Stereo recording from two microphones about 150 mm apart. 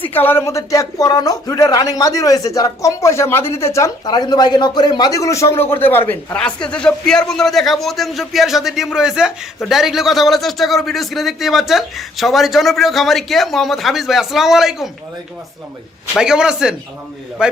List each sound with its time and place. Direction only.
0.1 s a man's voice: 15° left (ahead or behind); by 14.8 s centre (ahead or behind)
16.1 s a man's voice: 5° right (ahead or behind)